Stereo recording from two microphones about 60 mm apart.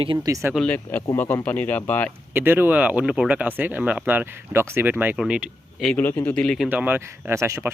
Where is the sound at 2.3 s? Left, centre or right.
Right.